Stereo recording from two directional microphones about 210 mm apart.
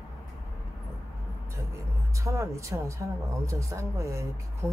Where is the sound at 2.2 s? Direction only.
15° right (ahead or behind).